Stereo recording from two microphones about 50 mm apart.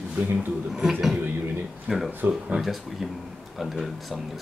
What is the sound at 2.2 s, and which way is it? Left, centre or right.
Speech, right.